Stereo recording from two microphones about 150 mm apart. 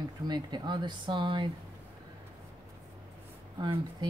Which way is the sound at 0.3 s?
30° right (ahead or behind).